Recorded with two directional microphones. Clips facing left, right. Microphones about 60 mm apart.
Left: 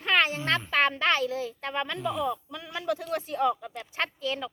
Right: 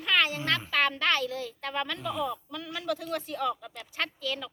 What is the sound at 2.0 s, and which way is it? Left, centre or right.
Speech, centre.